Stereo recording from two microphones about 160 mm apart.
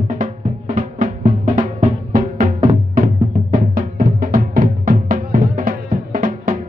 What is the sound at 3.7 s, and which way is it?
Music, 60° right (ahead or behind).